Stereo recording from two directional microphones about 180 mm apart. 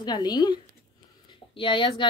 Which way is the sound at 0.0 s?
25° left (ahead or behind).